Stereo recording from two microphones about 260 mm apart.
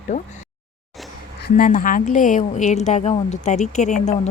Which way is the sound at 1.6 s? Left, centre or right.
Left.